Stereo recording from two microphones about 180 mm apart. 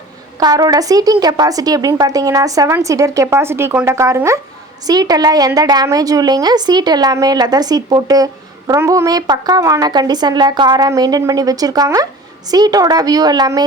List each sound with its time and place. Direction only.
0.3 s a woman's voice: 20° right (ahead or behind)